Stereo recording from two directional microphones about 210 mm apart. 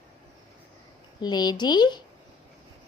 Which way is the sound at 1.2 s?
20° left (ahead or behind).